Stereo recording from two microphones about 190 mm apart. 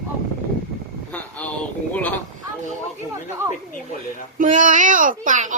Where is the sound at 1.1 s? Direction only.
5° left (ahead or behind).